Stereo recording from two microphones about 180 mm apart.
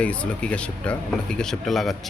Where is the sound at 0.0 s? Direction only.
5° left (ahead or behind).